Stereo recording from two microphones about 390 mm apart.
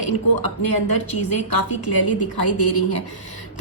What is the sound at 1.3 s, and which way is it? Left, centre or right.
A woman's voice, left.